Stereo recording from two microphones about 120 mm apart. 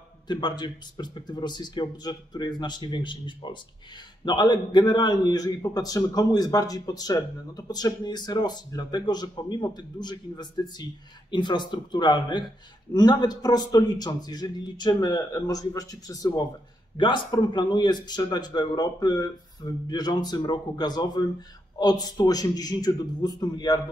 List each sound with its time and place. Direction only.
0.3 s a man's voice: 35° left (ahead or behind)